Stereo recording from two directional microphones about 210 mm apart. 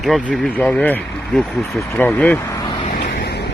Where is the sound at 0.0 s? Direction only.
Centre (ahead or behind).